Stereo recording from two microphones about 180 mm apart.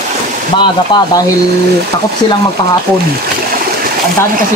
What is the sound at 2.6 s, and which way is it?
Speech, 20° left (ahead or behind).